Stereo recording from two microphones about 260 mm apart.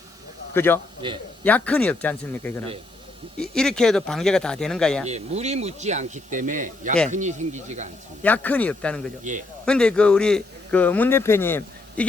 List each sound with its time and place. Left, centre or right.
0.5 s a man's voice: centre
1.0 s speech: centre
1.5 s speech: centre
5.0 s speech: right
8.2 s speech: centre
9.3 s speech: right
9.6 s speech: centre